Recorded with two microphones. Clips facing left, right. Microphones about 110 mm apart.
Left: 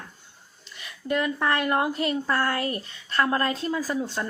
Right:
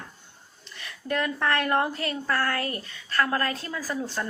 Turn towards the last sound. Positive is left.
turn(degrees=20)  # may be behind; listen again after turning